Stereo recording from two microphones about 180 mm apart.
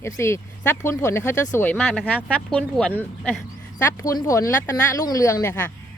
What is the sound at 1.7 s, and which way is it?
Speech, 5° left (ahead or behind).